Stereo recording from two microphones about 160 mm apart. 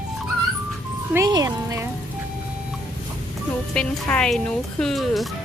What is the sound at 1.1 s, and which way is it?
Speech, 20° right (ahead or behind).